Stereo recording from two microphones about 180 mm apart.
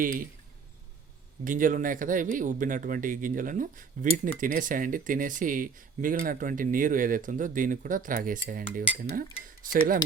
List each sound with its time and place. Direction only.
0.0 s speech: 50° right (ahead or behind)
1.5 s speech: 50° right (ahead or behind)